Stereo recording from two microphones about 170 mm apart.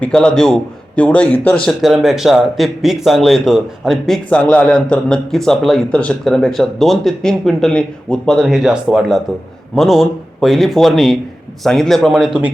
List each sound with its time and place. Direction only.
0.0 s speech: 5° left (ahead or behind)